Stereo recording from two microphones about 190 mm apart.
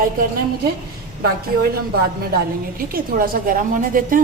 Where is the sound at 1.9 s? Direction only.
55° right (ahead or behind).